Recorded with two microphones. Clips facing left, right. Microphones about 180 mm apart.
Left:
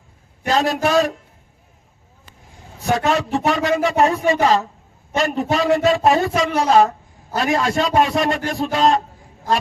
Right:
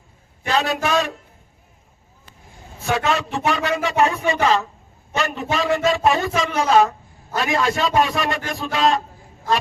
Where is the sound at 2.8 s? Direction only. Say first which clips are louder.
Left 3 dB; 40° left (ahead or behind).